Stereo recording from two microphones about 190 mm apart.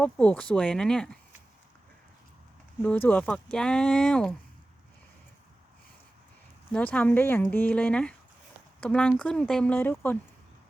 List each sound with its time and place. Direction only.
0.0 s speech: 10° left (ahead or behind)
2.8 s speech: 10° left (ahead or behind)
6.7 s a woman's voice: 5° left (ahead or behind)